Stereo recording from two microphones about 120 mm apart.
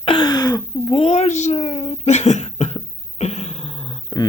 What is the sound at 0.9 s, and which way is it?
Cough, 55° left (ahead or behind).